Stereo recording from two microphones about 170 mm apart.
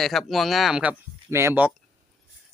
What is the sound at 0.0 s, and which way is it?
Speech, centre (ahead or behind).